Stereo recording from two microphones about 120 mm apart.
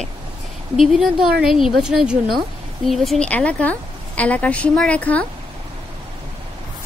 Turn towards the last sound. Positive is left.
turn(degrees=10)  # may be behind; listen again after turning